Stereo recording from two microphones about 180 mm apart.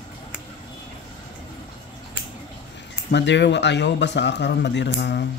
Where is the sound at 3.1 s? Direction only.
75° left (ahead or behind).